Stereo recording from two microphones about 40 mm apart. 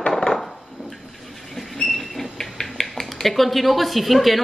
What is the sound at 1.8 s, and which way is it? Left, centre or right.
A woman's voice, centre.